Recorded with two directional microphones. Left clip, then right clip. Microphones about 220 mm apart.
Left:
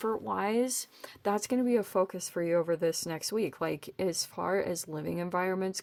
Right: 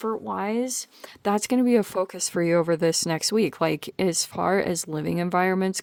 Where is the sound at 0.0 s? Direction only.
25° right (ahead or behind).